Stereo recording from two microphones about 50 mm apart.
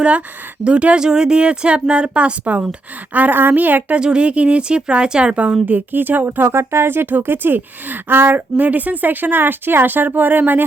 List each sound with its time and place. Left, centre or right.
0.6 s a woman's voice: right
3.9 s a woman's voice: centre
5.3 s a woman's voice: right
6.6 s speech: right